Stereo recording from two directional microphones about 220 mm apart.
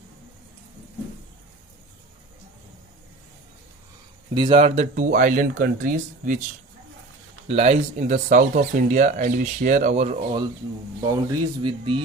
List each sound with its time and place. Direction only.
4.4 s speech: 25° right (ahead or behind)
7.4 s speech: 30° right (ahead or behind)